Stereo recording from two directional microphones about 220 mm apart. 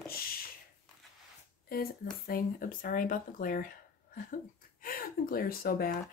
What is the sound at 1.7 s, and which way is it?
Speech, 40° left (ahead or behind).